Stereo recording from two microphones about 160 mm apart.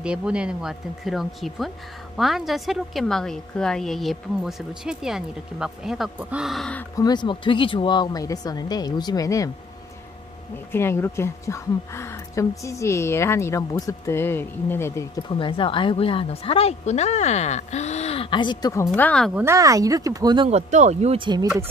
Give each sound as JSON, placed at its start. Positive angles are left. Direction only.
{"t": 0.0, "sound": "a woman's voice", "side_deg": -5}
{"t": 7.0, "sound": "speech", "side_deg": 25}
{"t": 10.7, "sound": "a woman's voice", "side_deg": 15}
{"t": 15.2, "sound": "a woman's voice", "side_deg": 30}
{"t": 18.9, "sound": "a woman's voice", "side_deg": 5}
{"t": 19.3, "sound": "speech", "side_deg": -15}
{"t": 20.4, "sound": "speech", "side_deg": -45}
{"t": 21.2, "sound": "speech", "side_deg": -30}